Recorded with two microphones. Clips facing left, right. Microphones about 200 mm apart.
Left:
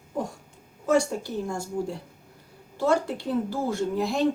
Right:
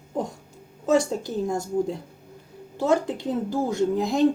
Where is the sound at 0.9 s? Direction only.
20° right (ahead or behind).